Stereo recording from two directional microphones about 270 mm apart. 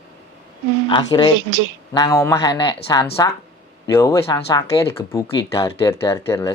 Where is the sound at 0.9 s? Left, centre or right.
Centre.